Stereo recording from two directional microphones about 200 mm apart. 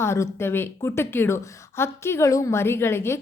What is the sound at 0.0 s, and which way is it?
A woman's voice, 15° left (ahead or behind).